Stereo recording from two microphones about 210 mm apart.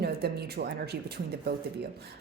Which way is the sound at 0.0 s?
50° right (ahead or behind).